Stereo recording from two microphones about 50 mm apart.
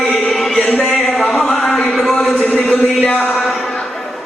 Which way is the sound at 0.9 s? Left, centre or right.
Centre.